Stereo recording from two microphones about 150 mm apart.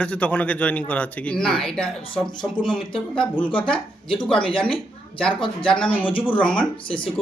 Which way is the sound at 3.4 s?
35° left (ahead or behind).